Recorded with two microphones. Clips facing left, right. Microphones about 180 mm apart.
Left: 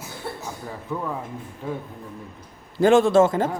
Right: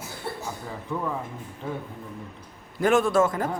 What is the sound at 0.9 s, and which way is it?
Speech, centre (ahead or behind).